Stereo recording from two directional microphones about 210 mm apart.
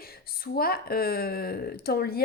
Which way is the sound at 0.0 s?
45° left (ahead or behind).